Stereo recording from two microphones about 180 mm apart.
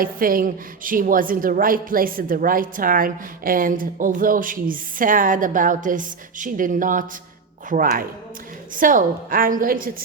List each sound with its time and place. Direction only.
0.0 s a woman's voice: 50° right (ahead or behind)